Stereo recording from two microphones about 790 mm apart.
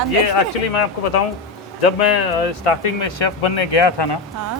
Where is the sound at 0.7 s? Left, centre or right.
Left.